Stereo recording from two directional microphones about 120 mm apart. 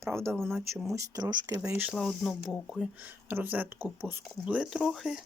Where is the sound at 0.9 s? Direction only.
30° right (ahead or behind).